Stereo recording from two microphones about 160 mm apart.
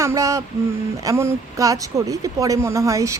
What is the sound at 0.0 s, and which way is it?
A woman's voice, 20° right (ahead or behind).